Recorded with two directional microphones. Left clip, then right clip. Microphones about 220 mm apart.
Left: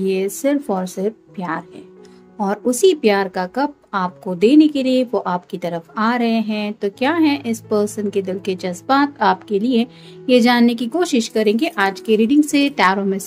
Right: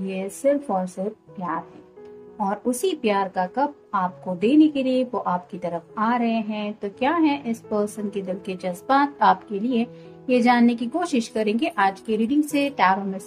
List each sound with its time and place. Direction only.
0.0 s a woman's voice: 40° left (ahead or behind)
2.3 s a woman's voice: 35° left (ahead or behind)